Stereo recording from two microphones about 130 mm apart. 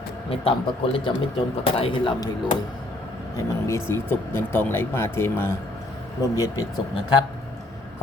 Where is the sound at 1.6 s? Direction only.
45° left (ahead or behind).